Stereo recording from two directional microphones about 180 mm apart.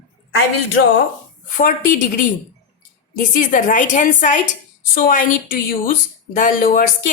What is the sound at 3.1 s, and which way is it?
A woman's voice, 50° left (ahead or behind).